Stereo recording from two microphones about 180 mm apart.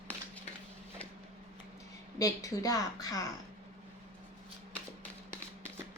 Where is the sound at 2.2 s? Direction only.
20° left (ahead or behind).